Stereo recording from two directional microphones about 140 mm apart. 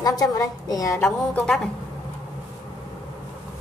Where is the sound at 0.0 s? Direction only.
25° left (ahead or behind).